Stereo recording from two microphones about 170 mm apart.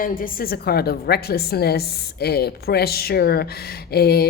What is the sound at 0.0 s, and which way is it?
A woman's voice, 55° left (ahead or behind).